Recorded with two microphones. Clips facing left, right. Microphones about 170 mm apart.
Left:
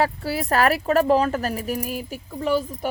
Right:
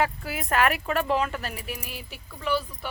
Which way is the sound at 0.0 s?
35° left (ahead or behind).